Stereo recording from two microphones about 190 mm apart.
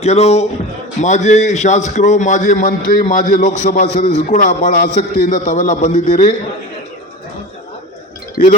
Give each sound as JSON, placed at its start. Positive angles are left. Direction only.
{"t": 0.0, "sound": "a man's voice", "side_deg": 35}